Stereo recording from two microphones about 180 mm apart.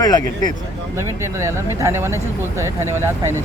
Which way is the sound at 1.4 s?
15° right (ahead or behind).